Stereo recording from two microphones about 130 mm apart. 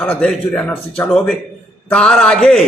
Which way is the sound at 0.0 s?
10° left (ahead or behind).